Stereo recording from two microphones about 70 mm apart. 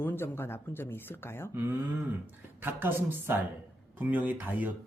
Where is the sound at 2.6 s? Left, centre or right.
Right.